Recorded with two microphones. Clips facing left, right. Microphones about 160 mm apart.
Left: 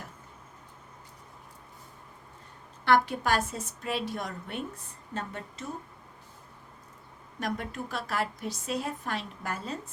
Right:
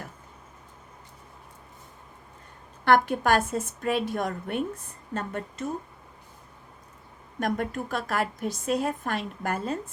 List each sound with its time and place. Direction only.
2.8 s a woman's voice: 50° right (ahead or behind)
7.3 s a woman's voice: 50° right (ahead or behind)